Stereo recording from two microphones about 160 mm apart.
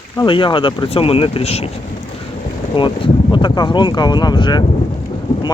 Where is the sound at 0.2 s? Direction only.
30° left (ahead or behind).